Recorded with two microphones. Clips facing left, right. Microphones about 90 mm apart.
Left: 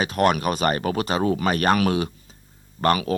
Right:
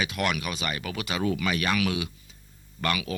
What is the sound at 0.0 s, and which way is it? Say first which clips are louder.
Speech: left 8 dB; 40° left (ahead or behind).